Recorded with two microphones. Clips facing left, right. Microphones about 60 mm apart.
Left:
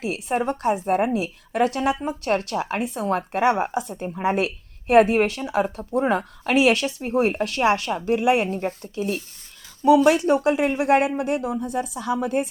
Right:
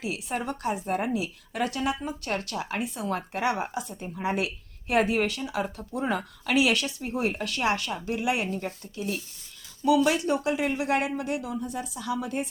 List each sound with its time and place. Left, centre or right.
0.0 s a woman's voice: left